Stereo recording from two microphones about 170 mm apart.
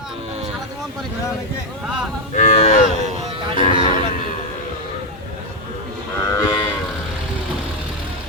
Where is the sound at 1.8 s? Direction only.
Centre (ahead or behind).